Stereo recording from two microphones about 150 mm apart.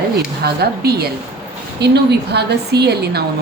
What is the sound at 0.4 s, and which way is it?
A woman's voice, 90° right.